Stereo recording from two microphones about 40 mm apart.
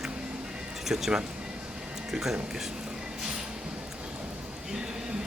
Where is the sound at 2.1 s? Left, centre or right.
Centre.